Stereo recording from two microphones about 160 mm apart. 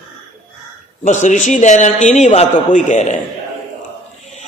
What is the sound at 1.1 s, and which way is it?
Mantra, 50° left (ahead or behind).